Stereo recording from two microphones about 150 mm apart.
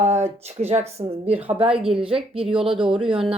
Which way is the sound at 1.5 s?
5° right (ahead or behind).